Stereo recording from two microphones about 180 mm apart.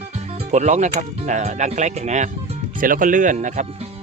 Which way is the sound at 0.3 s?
40° right (ahead or behind).